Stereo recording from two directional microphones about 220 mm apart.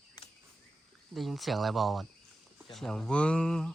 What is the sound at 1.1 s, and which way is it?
Speech, centre (ahead or behind).